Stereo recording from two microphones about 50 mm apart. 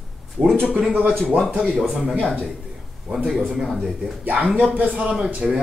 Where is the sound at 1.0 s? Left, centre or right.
Centre.